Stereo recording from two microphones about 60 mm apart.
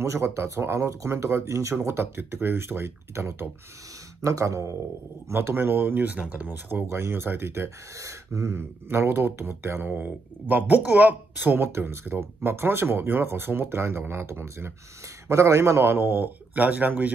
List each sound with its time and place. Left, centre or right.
0.0 s speech: right
4.2 s speech: right
5.3 s speech: right
6.4 s speech: right
8.0 s speech: right